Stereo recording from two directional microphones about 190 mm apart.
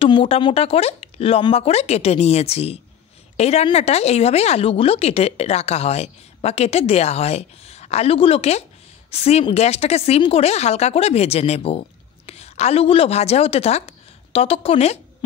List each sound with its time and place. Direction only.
0.0 s a woman's voice: 30° left (ahead or behind)